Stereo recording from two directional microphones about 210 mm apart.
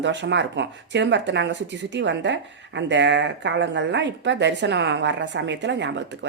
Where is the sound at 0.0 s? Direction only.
60° right (ahead or behind).